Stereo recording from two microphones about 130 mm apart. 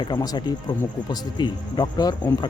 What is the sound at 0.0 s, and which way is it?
Speech, 30° left (ahead or behind).